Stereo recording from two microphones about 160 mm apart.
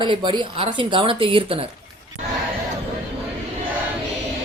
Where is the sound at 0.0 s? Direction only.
30° right (ahead or behind).